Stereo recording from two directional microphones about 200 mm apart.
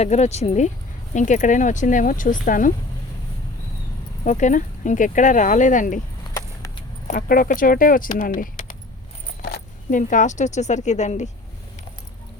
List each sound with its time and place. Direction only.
0.0 s speech: 35° left (ahead or behind)
4.2 s speech: 35° left (ahead or behind)
6.3 s a sound: 20° left (ahead or behind)
7.1 s speech: 45° left (ahead or behind)
9.4 s speech: 55° left (ahead or behind); by 11.3 s 35° left (ahead or behind)